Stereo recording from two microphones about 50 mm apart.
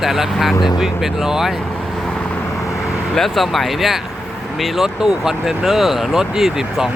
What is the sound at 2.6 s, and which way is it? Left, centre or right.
Vehicle, left.